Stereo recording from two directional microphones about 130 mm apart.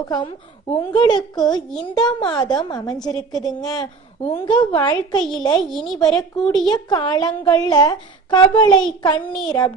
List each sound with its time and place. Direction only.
0.1 s a woman's voice: 35° left (ahead or behind)
5.6 s a woman's voice: centre (ahead or behind)
6.7 s a woman's voice: 35° left (ahead or behind)
9.2 s a woman's voice: 5° left (ahead or behind)
9.5 s a woman's voice: 30° left (ahead or behind)